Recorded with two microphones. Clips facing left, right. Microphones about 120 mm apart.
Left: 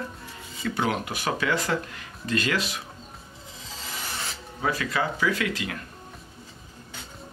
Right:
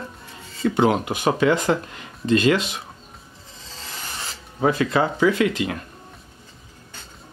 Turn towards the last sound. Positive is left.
turn(degrees=-25)  # may be behind; listen again after turning